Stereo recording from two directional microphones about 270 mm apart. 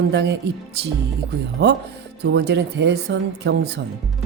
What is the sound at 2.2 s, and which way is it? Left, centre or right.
Speech, right.